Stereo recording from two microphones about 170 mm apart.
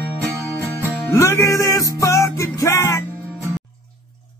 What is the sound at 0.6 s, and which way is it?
Music, 15° left (ahead or behind).